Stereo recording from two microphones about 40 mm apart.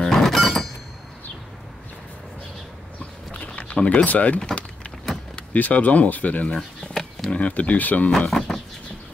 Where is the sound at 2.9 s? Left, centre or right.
Left.